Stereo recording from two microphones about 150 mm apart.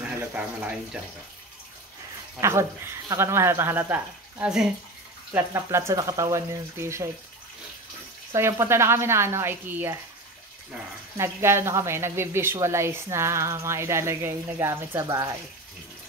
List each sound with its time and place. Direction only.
0.0 s a sound: 10° right (ahead or behind)
2.4 s speech: 20° right (ahead or behind)
5.3 s speech: 15° right (ahead or behind)
8.3 s speech: 20° right (ahead or behind)
11.1 s speech: 15° right (ahead or behind)